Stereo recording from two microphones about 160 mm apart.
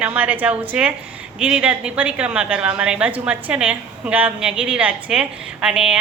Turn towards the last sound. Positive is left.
turn(degrees=-5)  # may be behind; listen again after turning